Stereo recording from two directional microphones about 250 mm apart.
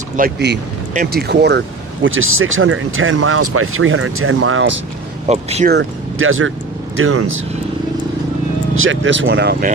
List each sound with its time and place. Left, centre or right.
0.2 s speech: right
5.3 s speech: right
5.7 s speech: right
8.7 s speech: right